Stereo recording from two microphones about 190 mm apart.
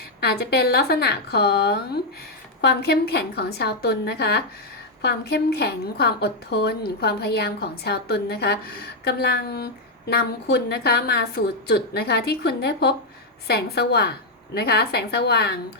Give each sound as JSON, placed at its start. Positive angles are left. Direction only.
{"t": 0.2, "sound": "a woman's voice", "side_deg": 60}